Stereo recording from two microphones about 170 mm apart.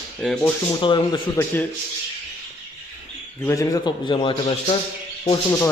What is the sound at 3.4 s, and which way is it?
Speech, 15° left (ahead or behind).